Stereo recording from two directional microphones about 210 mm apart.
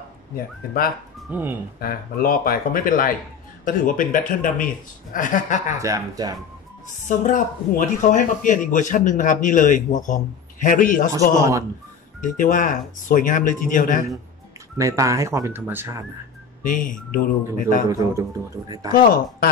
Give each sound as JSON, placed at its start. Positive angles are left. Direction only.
{"t": 1.3, "sound": "speech", "side_deg": -10}
{"t": 1.8, "sound": "speech", "side_deg": 45}
{"t": 5.8, "sound": "speech", "side_deg": -15}
{"t": 7.1, "sound": "speech", "side_deg": 40}
{"t": 12.2, "sound": "speech", "side_deg": 40}
{"t": 14.8, "sound": "speech", "side_deg": -15}
{"t": 16.6, "sound": "speech", "side_deg": 40}
{"t": 17.8, "sound": "speech", "side_deg": -15}